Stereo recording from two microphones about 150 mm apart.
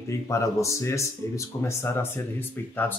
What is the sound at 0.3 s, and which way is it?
Speech, 20° left (ahead or behind).